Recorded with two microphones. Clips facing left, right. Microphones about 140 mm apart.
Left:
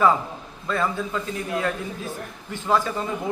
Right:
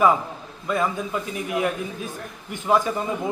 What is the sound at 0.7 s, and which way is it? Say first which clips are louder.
A man's voice: right 1 dB; 15° right (ahead or behind).